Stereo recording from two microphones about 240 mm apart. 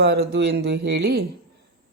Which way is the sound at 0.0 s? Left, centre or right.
Right.